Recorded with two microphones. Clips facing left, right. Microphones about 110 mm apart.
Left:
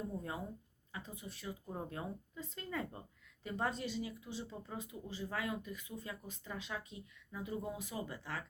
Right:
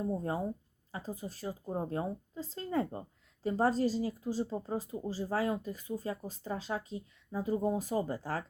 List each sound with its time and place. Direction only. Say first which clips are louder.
0.1 s speech: right 9 dB; 35° right (ahead or behind)